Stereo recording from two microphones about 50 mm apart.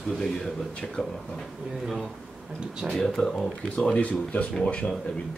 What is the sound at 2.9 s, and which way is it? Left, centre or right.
Speech, centre.